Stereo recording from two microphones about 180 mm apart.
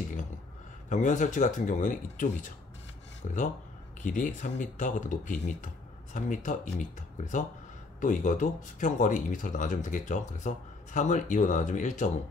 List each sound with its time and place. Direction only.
0.8 s speech: 45° left (ahead or behind)
3.2 s speech: 40° left (ahead or behind)